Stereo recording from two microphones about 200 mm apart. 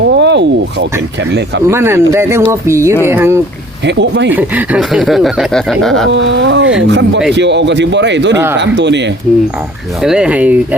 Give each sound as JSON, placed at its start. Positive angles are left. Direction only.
{"t": 0.2, "sound": "speech", "side_deg": -60}
{"t": 1.6, "sound": "speech", "side_deg": -10}
{"t": 3.8, "sound": "speech", "side_deg": -60}
{"t": 4.3, "sound": "speech", "side_deg": -10}
{"t": 6.1, "sound": "speech", "side_deg": -65}
{"t": 10.0, "sound": "speech", "side_deg": -5}